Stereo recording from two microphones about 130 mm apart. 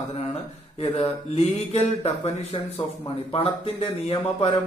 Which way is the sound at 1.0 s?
55° left (ahead or behind).